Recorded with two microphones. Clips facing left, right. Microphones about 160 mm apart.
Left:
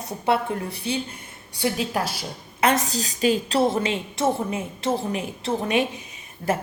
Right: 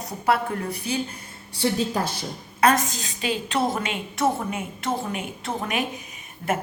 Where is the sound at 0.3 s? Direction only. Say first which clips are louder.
Even; 30° left (ahead or behind).